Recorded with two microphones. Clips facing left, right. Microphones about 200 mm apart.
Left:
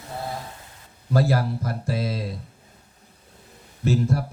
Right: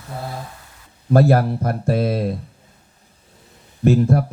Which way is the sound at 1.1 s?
60° right (ahead or behind).